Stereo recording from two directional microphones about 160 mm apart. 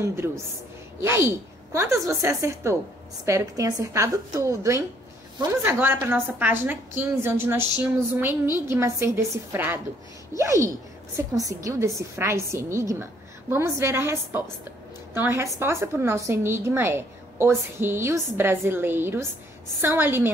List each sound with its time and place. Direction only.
0.0 s a woman's voice: 15° right (ahead or behind)